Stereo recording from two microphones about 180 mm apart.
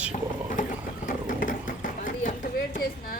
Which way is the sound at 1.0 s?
50° left (ahead or behind).